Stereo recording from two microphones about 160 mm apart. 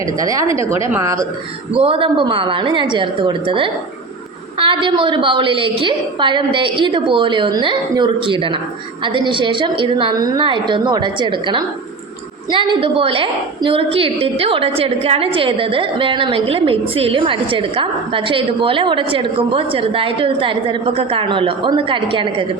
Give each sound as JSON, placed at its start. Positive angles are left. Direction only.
{"t": 0.2, "sound": "a woman's voice", "side_deg": -20}
{"t": 1.7, "sound": "a woman's voice", "side_deg": -35}